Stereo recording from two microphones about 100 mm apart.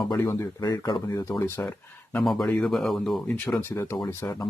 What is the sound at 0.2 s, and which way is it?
Speech, 25° left (ahead or behind).